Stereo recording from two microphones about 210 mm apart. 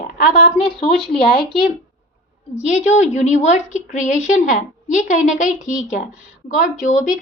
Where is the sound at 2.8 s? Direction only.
35° left (ahead or behind).